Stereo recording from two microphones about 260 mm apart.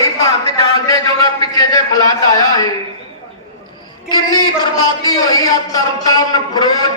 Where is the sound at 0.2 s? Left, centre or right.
Centre.